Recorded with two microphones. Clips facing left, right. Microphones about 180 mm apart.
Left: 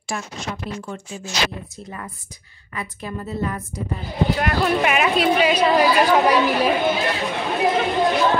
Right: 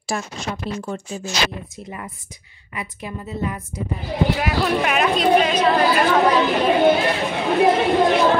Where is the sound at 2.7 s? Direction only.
20° right (ahead or behind).